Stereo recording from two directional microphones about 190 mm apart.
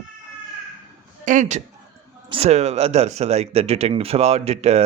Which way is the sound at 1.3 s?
40° right (ahead or behind).